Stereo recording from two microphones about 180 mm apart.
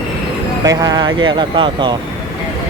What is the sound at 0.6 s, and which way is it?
Speech, 20° right (ahead or behind).